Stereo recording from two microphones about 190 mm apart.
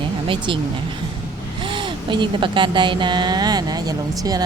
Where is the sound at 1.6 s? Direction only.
25° right (ahead or behind).